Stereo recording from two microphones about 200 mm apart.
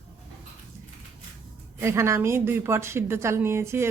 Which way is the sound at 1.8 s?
15° right (ahead or behind).